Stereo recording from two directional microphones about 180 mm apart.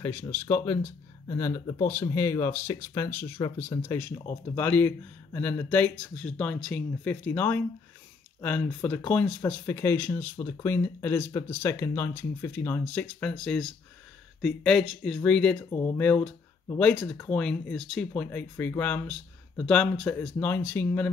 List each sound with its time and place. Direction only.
0.0 s speech: 15° left (ahead or behind)